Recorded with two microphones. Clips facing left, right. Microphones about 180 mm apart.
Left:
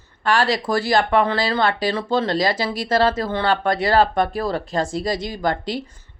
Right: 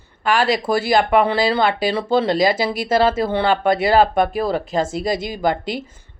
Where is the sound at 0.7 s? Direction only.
10° right (ahead or behind).